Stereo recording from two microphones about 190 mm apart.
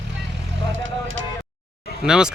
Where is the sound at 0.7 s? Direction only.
90° right.